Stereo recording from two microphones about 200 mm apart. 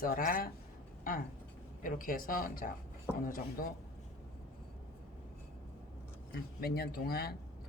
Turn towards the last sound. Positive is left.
turn(degrees=50)  # may be behind; listen again after turning